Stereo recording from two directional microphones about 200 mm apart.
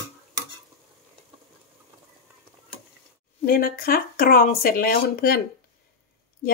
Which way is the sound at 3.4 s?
45° left (ahead or behind).